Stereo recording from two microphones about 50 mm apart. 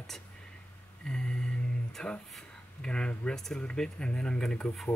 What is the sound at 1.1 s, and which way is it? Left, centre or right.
Speech, centre.